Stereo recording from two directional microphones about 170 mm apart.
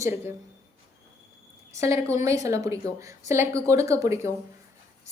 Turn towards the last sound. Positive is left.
turn(degrees=-15)  # may be behind; listen again after turning